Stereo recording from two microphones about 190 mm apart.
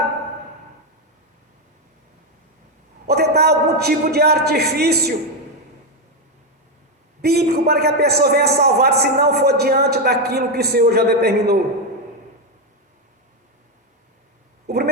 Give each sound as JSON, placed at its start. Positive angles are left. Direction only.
{"t": 3.1, "sound": "a man's voice", "side_deg": -55}
{"t": 7.2, "sound": "a man's voice", "side_deg": -55}
{"t": 14.7, "sound": "a sound", "side_deg": -55}